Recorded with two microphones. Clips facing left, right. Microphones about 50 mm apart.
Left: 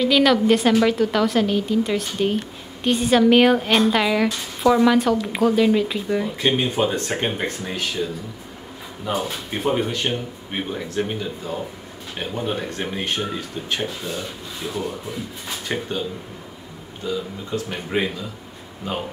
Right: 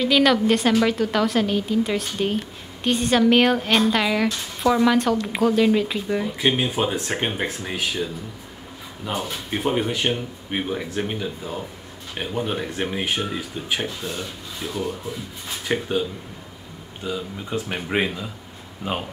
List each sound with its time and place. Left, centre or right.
0.0 s speech: centre
14.0 s speech: centre
15.7 s speech: centre
17.0 s speech: centre